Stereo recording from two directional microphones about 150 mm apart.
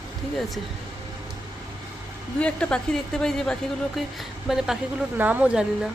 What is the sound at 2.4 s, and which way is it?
Speech, 5° left (ahead or behind).